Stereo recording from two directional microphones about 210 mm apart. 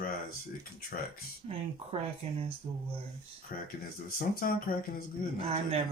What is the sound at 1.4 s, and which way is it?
Speech, 30° right (ahead or behind).